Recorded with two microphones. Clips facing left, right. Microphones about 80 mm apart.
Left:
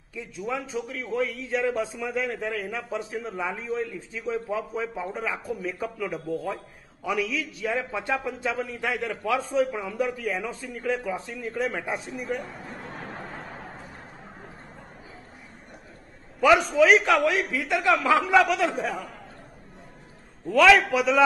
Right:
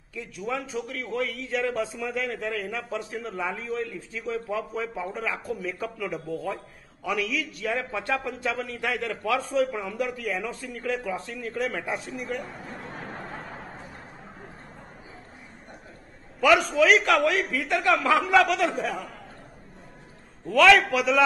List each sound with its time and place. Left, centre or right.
0.1 s a man's voice: centre
8.7 s speech: centre
9.0 s a man's voice: centre
11.9 s a sound: centre
16.3 s a man's voice: centre
17.5 s speech: centre
17.8 s a man's voice: centre
20.4 s a man's voice: centre